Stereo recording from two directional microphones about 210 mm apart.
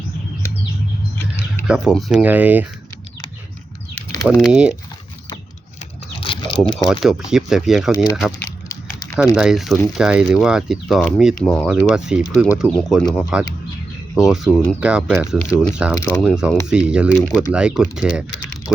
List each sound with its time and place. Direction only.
1.6 s speech: 5° right (ahead or behind)
4.2 s speech: centre (ahead or behind)
6.1 s a sound: 25° left (ahead or behind)
6.7 s speech: 20° left (ahead or behind)
7.0 s speech: centre (ahead or behind)
8.4 s typing: 15° left (ahead or behind)
9.1 s speech: 5° right (ahead or behind)
16.0 s speech: 15° left (ahead or behind)
16.2 s speech: 5° right (ahead or behind)